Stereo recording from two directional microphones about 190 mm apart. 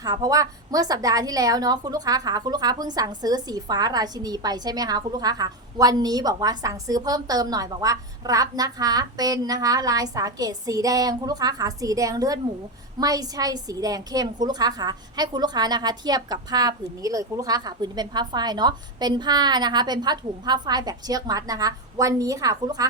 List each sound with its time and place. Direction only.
0.0 s a woman's voice: 20° right (ahead or behind)